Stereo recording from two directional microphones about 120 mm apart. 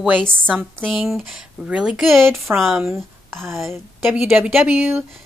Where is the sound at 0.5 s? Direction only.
15° right (ahead or behind).